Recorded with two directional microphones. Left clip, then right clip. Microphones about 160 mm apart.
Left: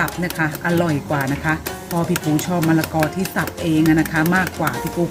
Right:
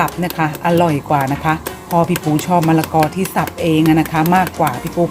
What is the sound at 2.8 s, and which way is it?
Speech, 15° right (ahead or behind).